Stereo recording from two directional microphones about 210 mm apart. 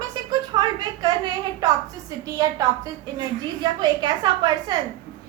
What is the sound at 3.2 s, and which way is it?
A woman's voice, 20° right (ahead or behind).